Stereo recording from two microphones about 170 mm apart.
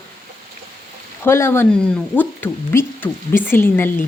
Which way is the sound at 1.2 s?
15° left (ahead or behind).